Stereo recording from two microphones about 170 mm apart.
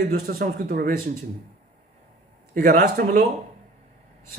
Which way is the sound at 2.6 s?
60° right (ahead or behind).